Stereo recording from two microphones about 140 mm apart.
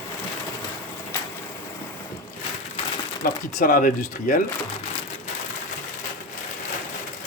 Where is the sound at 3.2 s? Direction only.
85° left.